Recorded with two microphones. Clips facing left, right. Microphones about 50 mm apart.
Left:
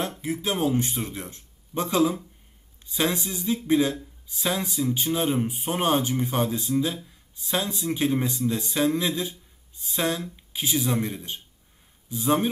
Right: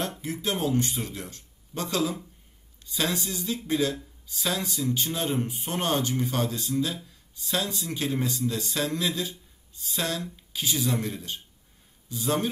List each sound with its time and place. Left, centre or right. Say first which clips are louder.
0.2 s speech: left 5 dB; centre